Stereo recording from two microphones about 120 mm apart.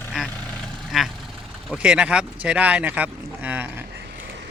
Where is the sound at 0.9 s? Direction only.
Centre (ahead or behind).